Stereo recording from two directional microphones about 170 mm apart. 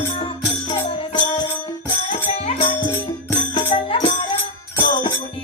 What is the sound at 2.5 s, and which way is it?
Music, 35° left (ahead or behind).